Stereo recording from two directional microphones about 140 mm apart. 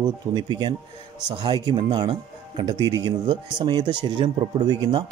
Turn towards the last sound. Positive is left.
turn(degrees=-30)  # may be behind; listen again after turning